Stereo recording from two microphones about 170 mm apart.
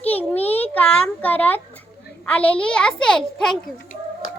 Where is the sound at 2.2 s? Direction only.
5° left (ahead or behind).